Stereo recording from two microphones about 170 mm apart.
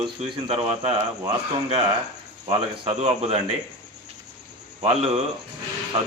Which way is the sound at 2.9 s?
35° right (ahead or behind).